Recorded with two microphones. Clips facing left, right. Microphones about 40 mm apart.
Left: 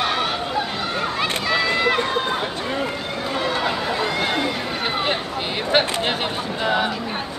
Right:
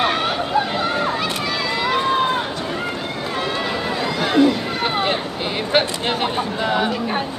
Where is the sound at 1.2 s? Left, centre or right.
Centre.